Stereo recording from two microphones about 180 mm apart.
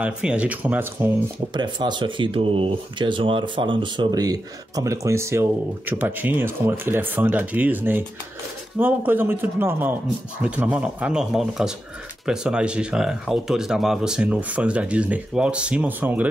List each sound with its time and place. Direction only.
0.0 s speech: 5° right (ahead or behind)
1.5 s speech: 25° right (ahead or behind); by 16.3 s 10° right (ahead or behind)